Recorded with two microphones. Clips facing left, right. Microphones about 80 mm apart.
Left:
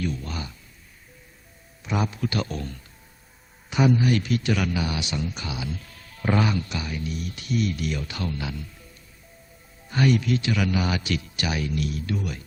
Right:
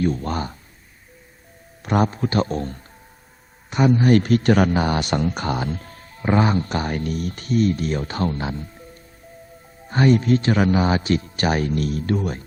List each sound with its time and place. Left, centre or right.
0.0 s speech: right
1.8 s speech: right
9.9 s speech: right